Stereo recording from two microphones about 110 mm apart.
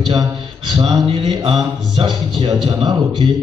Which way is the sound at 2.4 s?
45° right (ahead or behind).